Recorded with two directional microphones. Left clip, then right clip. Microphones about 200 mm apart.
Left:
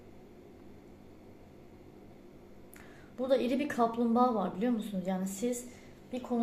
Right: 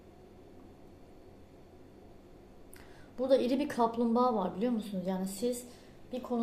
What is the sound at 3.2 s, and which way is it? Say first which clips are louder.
A woman's voice: right 1 dB; 15° right (ahead or behind).